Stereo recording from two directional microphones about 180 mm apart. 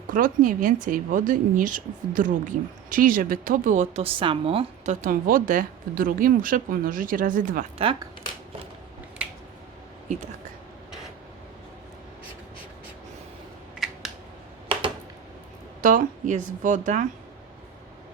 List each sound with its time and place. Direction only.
0.1 s speech: 45° right (ahead or behind); by 4.9 s 30° right (ahead or behind)
5.0 s speech: 50° right (ahead or behind)
7.8 s speech: 30° right (ahead or behind)
13.7 s camera: centre (ahead or behind)
15.8 s speech: 45° right (ahead or behind)